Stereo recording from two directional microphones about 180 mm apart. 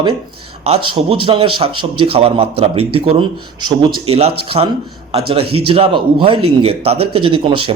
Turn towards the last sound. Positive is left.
turn(degrees=-30)  # may be behind; listen again after turning